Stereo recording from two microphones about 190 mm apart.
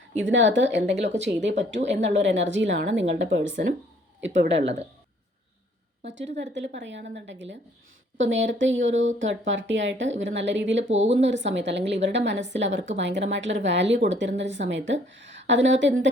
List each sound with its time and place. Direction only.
0.2 s speech: 75° right (ahead or behind)
6.1 s speech: 70° right (ahead or behind)
8.2 s speech: 80° right